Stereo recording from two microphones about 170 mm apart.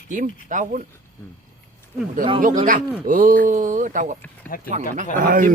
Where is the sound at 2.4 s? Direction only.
50° right (ahead or behind).